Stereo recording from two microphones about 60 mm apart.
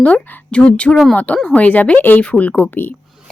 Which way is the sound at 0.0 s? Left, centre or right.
Centre.